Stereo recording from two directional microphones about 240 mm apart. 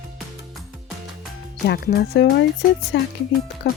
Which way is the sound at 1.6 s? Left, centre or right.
Left.